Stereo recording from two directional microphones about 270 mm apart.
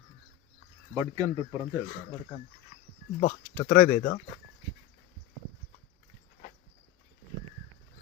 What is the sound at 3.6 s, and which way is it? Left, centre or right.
Speech, centre.